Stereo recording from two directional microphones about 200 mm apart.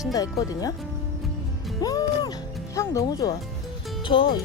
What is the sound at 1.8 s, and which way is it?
Music, 20° left (ahead or behind).